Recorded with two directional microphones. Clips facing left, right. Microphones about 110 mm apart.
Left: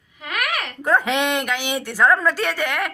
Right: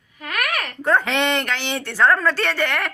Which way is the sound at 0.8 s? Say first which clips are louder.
Even; 5° left (ahead or behind).